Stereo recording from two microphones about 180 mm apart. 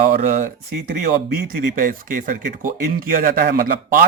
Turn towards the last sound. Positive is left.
turn(degrees=-50)  # may be behind; listen again after turning